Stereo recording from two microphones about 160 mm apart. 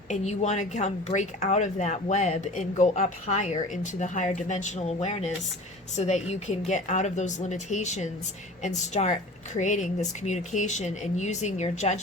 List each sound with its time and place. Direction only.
0.1 s a woman's voice: 50° left (ahead or behind)